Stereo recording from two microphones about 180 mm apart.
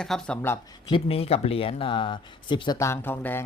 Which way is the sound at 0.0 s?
5° left (ahead or behind).